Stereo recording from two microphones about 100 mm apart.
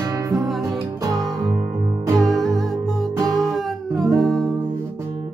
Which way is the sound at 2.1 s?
5° left (ahead or behind).